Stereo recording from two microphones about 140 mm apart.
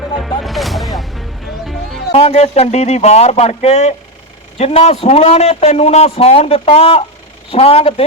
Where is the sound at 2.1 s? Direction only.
45° left (ahead or behind).